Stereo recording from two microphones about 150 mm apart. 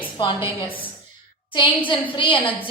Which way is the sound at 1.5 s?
30° left (ahead or behind).